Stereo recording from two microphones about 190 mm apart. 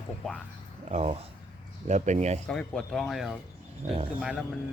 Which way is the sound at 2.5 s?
5° left (ahead or behind).